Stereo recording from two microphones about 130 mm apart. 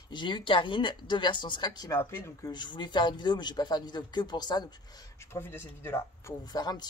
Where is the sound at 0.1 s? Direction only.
35° left (ahead or behind).